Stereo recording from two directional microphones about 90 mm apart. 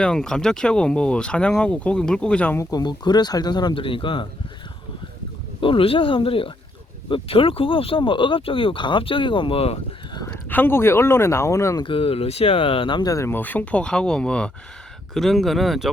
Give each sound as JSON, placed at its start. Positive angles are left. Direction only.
{"t": 0.0, "sound": "speech", "side_deg": 5}
{"t": 2.6, "sound": "speech", "side_deg": 45}
{"t": 3.8, "sound": "speech", "side_deg": 75}
{"t": 5.5, "sound": "speech", "side_deg": 75}
{"t": 10.2, "sound": "speech", "side_deg": 25}
{"t": 11.8, "sound": "speech", "side_deg": 85}
{"t": 13.1, "sound": "speech", "side_deg": 35}
{"t": 13.3, "sound": "speech", "side_deg": 20}